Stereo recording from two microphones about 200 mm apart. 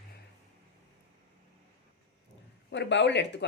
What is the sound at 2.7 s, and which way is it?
Speech, 60° left (ahead or behind).